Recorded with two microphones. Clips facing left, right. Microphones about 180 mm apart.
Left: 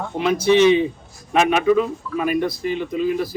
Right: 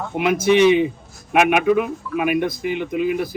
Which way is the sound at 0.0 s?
10° right (ahead or behind).